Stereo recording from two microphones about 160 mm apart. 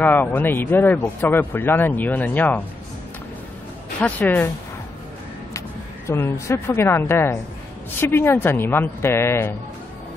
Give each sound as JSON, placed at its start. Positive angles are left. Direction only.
{"t": 0.0, "sound": "speech", "side_deg": 10}
{"t": 4.0, "sound": "speech", "side_deg": 10}
{"t": 6.0, "sound": "speech", "side_deg": 15}